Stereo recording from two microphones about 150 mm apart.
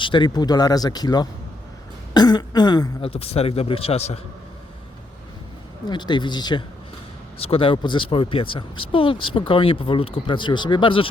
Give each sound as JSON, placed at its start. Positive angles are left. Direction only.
{"t": 0.0, "sound": "speech", "side_deg": 30}
{"t": 3.1, "sound": "speech", "side_deg": 40}
{"t": 5.9, "sound": "speech", "side_deg": 30}